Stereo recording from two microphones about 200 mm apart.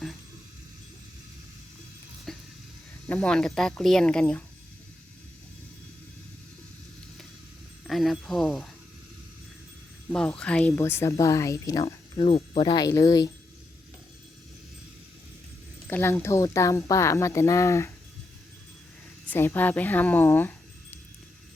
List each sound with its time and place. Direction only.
2.3 s a sound: centre (ahead or behind)
3.1 s speech: 5° left (ahead or behind)
7.9 s a sound: centre (ahead or behind)
10.1 s speech: 5° left (ahead or behind)
15.9 s speech: 10° left (ahead or behind)
19.3 s speech: 10° left (ahead or behind)